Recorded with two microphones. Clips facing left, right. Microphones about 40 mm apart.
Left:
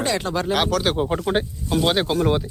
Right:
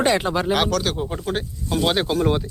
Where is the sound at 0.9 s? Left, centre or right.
Left.